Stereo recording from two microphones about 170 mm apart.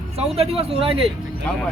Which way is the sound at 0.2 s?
35° right (ahead or behind).